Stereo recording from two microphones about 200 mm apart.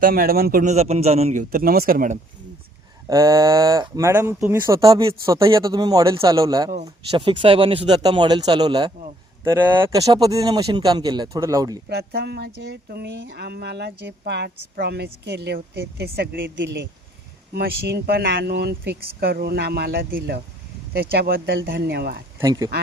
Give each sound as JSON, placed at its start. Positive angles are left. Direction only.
{"t": 0.0, "sound": "speech", "side_deg": -45}
{"t": 3.1, "sound": "speech", "side_deg": -15}
{"t": 11.9, "sound": "speech", "side_deg": -55}
{"t": 17.5, "sound": "speech", "side_deg": -50}
{"t": 22.4, "sound": "speech", "side_deg": -15}